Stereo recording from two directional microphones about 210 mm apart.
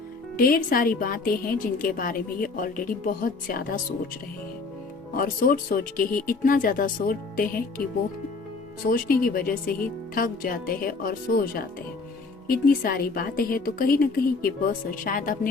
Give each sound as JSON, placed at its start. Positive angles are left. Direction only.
{"t": 0.3, "sound": "a woman's voice", "side_deg": 45}
{"t": 5.1, "sound": "a woman's voice", "side_deg": 40}
{"t": 8.9, "sound": "a woman's voice", "side_deg": 45}